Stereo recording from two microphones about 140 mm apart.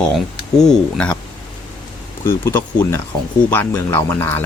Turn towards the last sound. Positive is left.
turn(degrees=15)  # may be behind; listen again after turning